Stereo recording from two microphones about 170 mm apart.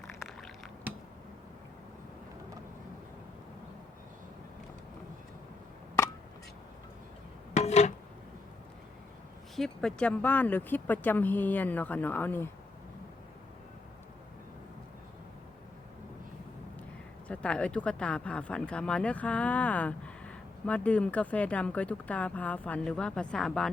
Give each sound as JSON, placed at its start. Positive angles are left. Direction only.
{"t": 7.5, "sound": "a sound", "side_deg": 40}
{"t": 9.6, "sound": "speech", "side_deg": 5}
{"t": 17.2, "sound": "speech", "side_deg": 5}